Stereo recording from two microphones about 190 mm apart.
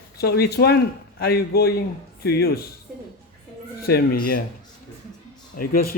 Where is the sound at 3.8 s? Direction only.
55° left (ahead or behind).